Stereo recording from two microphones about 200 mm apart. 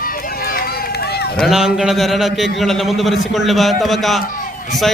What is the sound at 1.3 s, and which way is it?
A man's voice, centre (ahead or behind).